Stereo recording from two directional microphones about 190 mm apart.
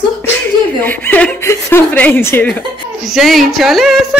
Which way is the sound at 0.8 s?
10° left (ahead or behind).